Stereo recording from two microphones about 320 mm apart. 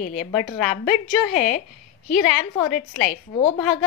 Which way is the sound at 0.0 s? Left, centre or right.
Left.